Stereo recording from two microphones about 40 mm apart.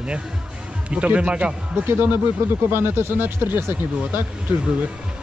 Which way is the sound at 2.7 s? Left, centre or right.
Right.